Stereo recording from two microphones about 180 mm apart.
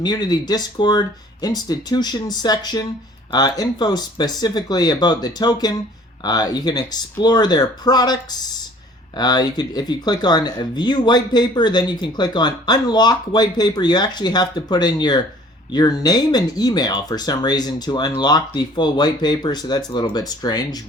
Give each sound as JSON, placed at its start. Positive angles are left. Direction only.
{"t": 0.0, "sound": "speech", "side_deg": 20}